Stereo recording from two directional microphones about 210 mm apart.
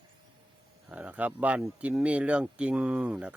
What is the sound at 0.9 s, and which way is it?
Speech, 5° right (ahead or behind).